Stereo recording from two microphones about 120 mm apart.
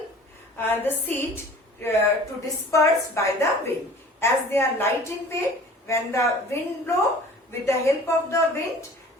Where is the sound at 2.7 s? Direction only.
25° left (ahead or behind).